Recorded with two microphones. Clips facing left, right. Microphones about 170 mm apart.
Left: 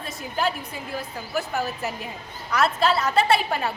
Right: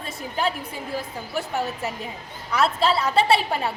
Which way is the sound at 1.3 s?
5° left (ahead or behind).